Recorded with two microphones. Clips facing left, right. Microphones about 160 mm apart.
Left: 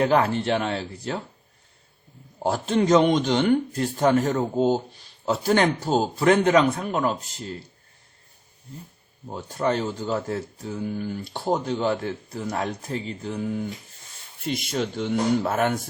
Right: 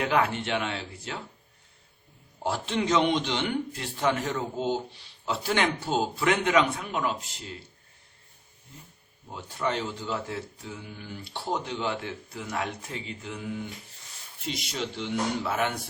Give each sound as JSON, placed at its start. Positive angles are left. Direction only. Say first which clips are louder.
{"t": 0.0, "sound": "speech", "louder": "left 5 dB", "side_deg": 35}
{"t": 2.4, "sound": "speech", "louder": "left 6 dB", "side_deg": 45}
{"t": 9.3, "sound": "speech", "louder": "left 6 dB", "side_deg": 40}
{"t": 14.3, "sound": "speech", "louder": "left 7 dB", "side_deg": 50}